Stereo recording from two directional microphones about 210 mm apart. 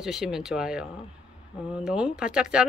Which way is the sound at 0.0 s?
Centre (ahead or behind).